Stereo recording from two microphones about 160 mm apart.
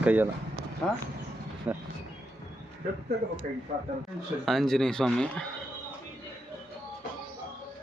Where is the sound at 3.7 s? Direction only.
45° right (ahead or behind).